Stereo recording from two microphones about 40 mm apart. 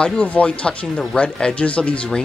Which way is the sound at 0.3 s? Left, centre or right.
Left.